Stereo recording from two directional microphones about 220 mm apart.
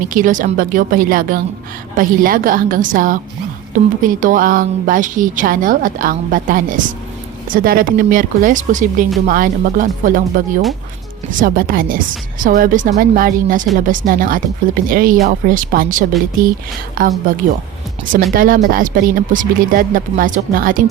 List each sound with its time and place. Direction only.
0.0 s a woman's voice: 40° right (ahead or behind)